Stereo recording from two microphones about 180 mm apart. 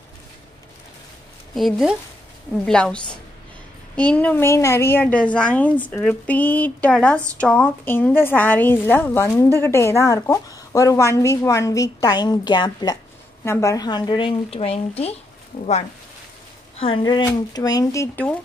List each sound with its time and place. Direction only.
1.5 s a woman's voice: centre (ahead or behind); by 15.1 s 35° left (ahead or behind)
15.5 s speech: 45° left (ahead or behind)
16.8 s speech: 25° left (ahead or behind)